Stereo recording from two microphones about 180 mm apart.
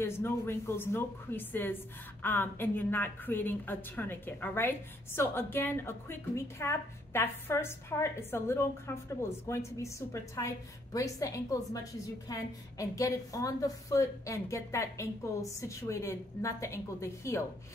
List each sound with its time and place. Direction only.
0.0 s a woman's voice: 15° left (ahead or behind)